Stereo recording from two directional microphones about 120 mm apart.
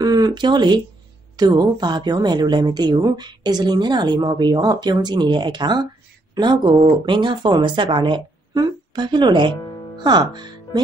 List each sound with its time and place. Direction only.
0.0 s speech: 35° right (ahead or behind)